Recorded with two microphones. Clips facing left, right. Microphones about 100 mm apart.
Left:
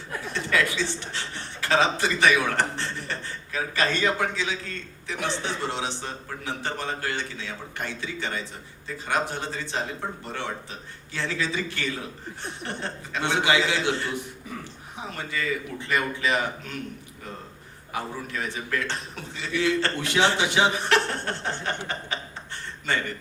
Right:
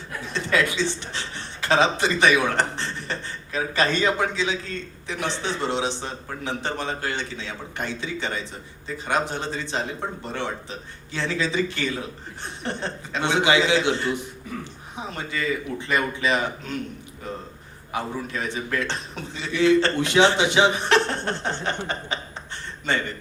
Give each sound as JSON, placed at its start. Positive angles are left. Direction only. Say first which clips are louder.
{"t": 0.3, "sound": "a man's voice", "louder": "right 2 dB", "side_deg": -20}
{"t": 17.9, "sound": "a man's voice", "louder": "right 3 dB", "side_deg": -20}